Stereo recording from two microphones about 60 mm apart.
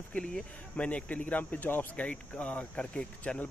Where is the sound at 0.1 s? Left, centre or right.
Centre.